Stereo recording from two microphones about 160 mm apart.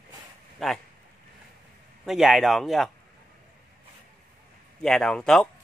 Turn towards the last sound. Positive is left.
turn(degrees=5)  # may be behind; listen again after turning